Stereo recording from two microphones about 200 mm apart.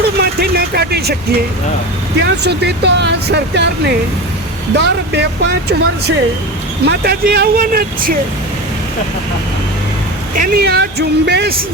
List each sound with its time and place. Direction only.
0.0 s vehicle: 55° right (ahead or behind)
2.2 s speech: 55° right (ahead or behind)
10.3 s speech: 45° right (ahead or behind)